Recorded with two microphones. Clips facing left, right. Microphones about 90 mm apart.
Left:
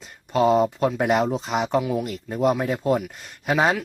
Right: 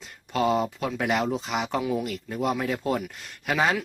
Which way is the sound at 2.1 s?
30° left (ahead or behind).